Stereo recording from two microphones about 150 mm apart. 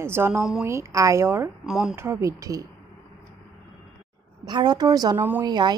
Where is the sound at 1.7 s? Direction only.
5° right (ahead or behind).